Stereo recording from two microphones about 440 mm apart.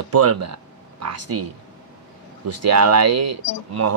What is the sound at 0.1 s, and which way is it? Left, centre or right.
Speech, right.